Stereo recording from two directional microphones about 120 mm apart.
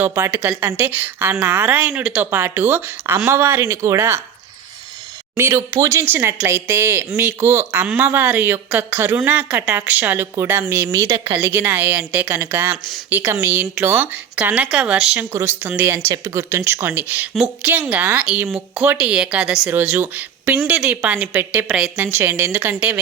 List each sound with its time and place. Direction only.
0.0 s a woman's voice: 25° right (ahead or behind)
5.4 s speech: 20° right (ahead or behind)
11.4 s a woman's voice: 15° right (ahead or behind)
15.2 s a woman's voice: 20° right (ahead or behind)
22.0 s speech: 20° right (ahead or behind)